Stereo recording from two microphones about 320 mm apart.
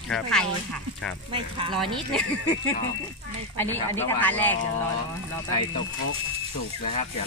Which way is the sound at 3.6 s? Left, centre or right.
Centre.